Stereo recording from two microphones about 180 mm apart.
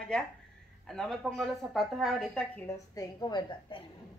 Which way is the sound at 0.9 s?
Centre (ahead or behind).